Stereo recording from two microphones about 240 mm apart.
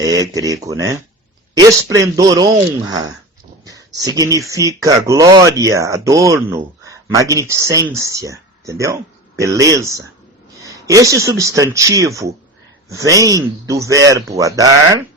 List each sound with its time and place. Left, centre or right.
0.0 s speech: centre